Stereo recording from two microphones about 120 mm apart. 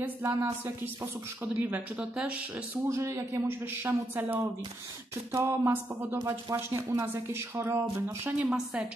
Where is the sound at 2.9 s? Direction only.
25° right (ahead or behind).